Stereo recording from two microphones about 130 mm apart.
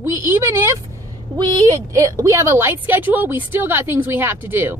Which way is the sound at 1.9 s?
25° right (ahead or behind).